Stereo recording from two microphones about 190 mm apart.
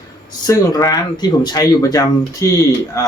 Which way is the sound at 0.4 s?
20° left (ahead or behind).